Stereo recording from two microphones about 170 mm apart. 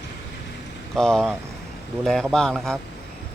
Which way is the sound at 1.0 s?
5° left (ahead or behind).